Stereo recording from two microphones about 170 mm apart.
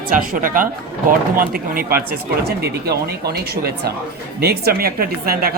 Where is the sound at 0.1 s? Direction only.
55° right (ahead or behind).